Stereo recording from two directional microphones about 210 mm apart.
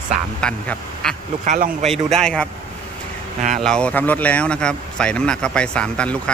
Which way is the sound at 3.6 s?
5° left (ahead or behind).